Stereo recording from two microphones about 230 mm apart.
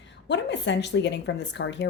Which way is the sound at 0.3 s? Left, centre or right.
Left.